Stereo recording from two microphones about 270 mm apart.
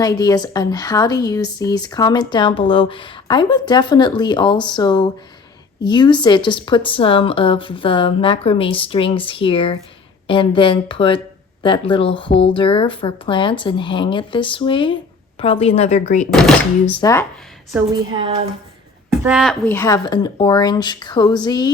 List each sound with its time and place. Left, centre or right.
0.0 s a woman's voice: centre
16.3 s a woman's voice: centre
17.9 s a woman's voice: centre
19.2 s a woman's voice: centre